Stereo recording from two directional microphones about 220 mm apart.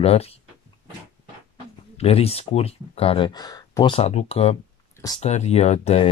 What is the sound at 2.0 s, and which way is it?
Speech, 25° left (ahead or behind).